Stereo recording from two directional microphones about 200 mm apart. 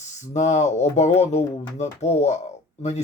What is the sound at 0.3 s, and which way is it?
Speech, 35° left (ahead or behind).